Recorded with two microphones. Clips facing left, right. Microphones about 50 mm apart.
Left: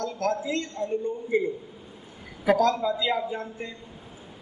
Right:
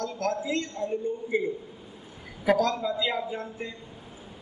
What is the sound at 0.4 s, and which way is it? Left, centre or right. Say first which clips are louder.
A man's voice: even; centre.